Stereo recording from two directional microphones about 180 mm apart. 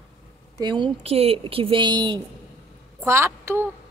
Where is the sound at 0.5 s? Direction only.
25° right (ahead or behind).